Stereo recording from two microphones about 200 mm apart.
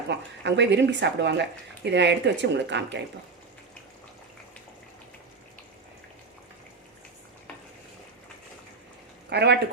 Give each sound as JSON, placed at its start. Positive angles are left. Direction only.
{"t": 0.1, "sound": "speech", "side_deg": -60}
{"t": 9.3, "sound": "speech", "side_deg": -55}